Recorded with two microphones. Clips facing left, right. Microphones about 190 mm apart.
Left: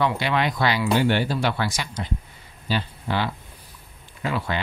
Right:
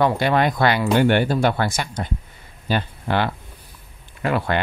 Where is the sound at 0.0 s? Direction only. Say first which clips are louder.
Right 5 dB; 45° right (ahead or behind).